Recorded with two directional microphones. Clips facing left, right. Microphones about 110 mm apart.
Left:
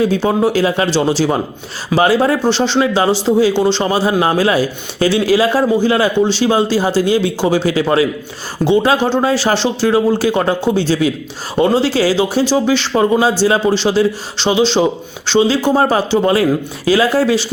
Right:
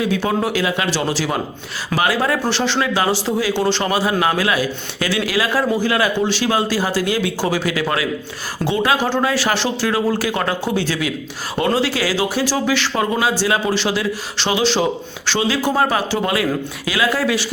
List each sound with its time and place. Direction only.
0.0 s speech: 30° left (ahead or behind)